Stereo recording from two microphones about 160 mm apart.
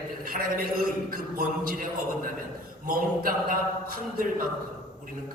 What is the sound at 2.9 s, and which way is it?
Speech, 60° right (ahead or behind).